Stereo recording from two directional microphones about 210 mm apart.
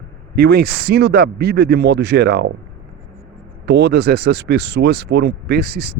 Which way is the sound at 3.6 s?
55° right (ahead or behind).